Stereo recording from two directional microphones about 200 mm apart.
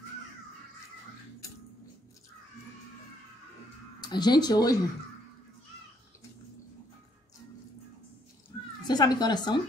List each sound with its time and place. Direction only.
4.0 s speech: 20° left (ahead or behind)
8.8 s speech: 20° left (ahead or behind)